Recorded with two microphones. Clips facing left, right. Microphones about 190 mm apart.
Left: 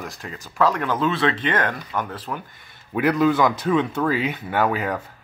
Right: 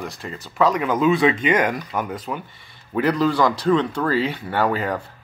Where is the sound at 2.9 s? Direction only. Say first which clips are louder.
Left 1 dB; 5° left (ahead or behind).